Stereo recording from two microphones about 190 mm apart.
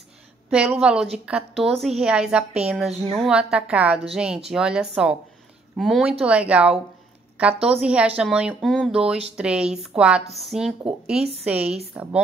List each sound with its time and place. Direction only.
0.5 s a woman's voice: 5° right (ahead or behind)